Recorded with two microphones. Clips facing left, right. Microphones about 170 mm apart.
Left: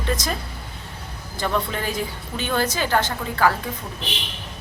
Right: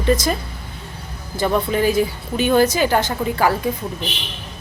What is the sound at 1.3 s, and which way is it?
A woman's voice, 10° right (ahead or behind).